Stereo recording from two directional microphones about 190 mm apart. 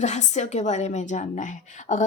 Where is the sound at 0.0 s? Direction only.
40° left (ahead or behind).